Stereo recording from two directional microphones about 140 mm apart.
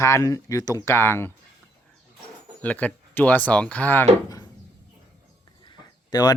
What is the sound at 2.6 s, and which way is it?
Speech, 10° left (ahead or behind).